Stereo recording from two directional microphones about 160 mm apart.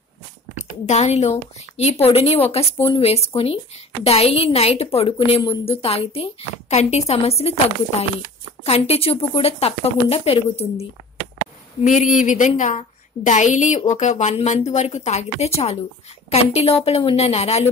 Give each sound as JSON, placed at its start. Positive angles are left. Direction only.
{"t": 0.6, "sound": "a woman's voice", "side_deg": 45}
{"t": 11.8, "sound": "a woman's voice", "side_deg": 55}